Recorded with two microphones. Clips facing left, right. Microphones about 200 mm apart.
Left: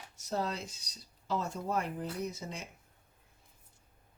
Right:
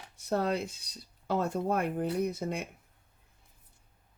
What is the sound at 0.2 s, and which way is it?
Speech, 55° right (ahead or behind).